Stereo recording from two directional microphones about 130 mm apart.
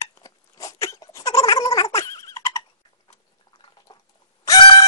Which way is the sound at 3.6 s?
35° left (ahead or behind).